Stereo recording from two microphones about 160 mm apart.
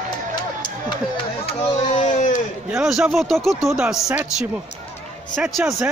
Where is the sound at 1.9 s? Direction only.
50° left (ahead or behind).